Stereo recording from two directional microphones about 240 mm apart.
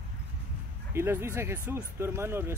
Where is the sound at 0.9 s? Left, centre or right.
Centre.